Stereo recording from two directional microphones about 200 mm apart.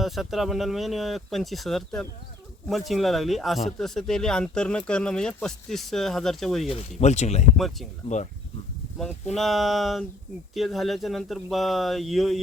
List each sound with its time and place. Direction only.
0.0 s speech: centre (ahead or behind)
6.7 s speech: 30° left (ahead or behind)
7.5 s speech: centre (ahead or behind)
9.3 s speech: centre (ahead or behind)